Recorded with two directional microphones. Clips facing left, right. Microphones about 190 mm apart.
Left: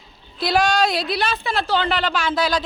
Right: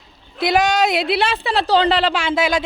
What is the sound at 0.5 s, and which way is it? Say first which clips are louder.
A woman's voice: right 2 dB; 20° right (ahead or behind).